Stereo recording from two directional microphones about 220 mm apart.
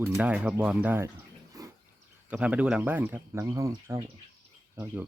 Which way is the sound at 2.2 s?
5° right (ahead or behind).